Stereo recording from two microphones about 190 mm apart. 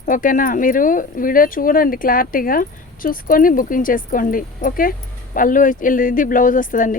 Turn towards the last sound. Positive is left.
turn(degrees=45)  # may be behind; listen again after turning